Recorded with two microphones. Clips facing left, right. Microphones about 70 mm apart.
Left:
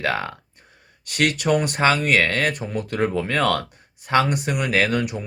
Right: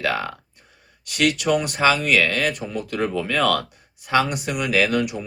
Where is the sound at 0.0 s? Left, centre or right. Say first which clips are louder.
Even; left.